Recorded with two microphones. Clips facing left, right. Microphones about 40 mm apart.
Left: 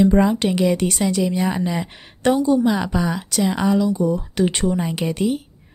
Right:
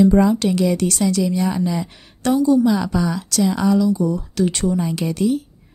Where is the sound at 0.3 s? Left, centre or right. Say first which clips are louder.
Right 1 dB; left.